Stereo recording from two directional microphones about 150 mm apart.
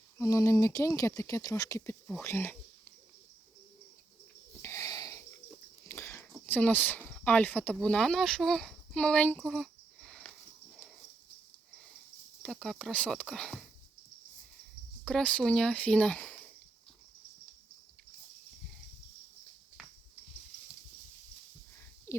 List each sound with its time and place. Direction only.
0.2 s speech: 20° left (ahead or behind)
4.6 s wheeze: 20° left (ahead or behind)
5.9 s a sound: 15° left (ahead or behind)
6.4 s speech: 10° left (ahead or behind)
12.4 s speech: 5° left (ahead or behind)
15.0 s speech: 10° left (ahead or behind)
22.1 s whispering: 15° left (ahead or behind)